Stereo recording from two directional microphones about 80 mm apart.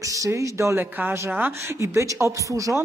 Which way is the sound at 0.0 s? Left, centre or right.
Right.